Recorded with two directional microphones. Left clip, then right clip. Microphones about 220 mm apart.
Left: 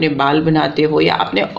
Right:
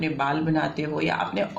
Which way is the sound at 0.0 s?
45° left (ahead or behind).